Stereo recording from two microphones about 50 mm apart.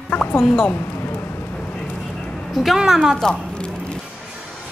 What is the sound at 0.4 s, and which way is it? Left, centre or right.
Speech, centre.